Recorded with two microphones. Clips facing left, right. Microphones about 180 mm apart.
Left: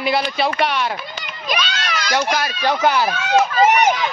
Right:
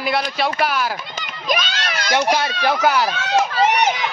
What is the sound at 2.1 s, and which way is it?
Speech, 25° right (ahead or behind).